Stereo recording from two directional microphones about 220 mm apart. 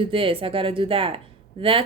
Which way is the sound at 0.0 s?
25° right (ahead or behind).